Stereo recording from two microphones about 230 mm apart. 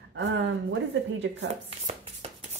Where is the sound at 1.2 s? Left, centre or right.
Right.